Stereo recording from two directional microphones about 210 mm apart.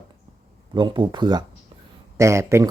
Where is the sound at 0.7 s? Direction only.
20° right (ahead or behind).